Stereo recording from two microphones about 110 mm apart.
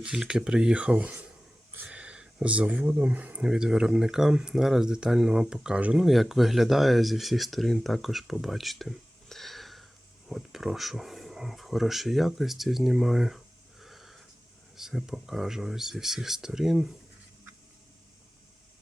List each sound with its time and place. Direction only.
0.0 s speech: 5° right (ahead or behind)